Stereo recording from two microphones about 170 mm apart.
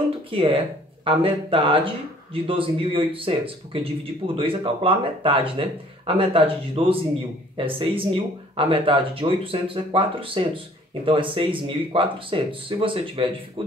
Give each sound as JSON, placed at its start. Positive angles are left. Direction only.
{"t": 0.3, "sound": "speech", "side_deg": -30}